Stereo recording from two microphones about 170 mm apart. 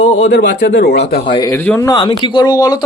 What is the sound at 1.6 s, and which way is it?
Speech, 10° left (ahead or behind).